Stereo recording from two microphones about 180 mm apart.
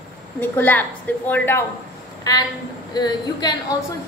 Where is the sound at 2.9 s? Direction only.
20° left (ahead or behind).